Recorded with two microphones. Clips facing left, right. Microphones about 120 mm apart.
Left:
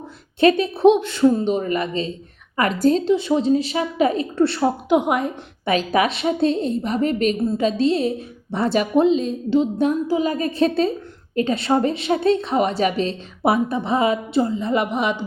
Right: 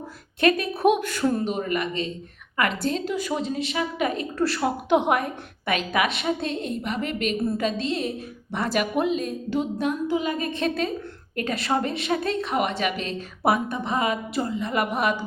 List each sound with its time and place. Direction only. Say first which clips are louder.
0.3 s a woman's voice: left 5 dB; 30° left (ahead or behind)
5.0 s a woman's voice: left 2 dB; 20° left (ahead or behind)
5.6 s a woman's voice: left 5 dB; 30° left (ahead or behind)
7.4 s a woman's voice: left 5 dB; 20° left (ahead or behind)
7.8 s a woman's voice: left 8 dB; 30° left (ahead or behind)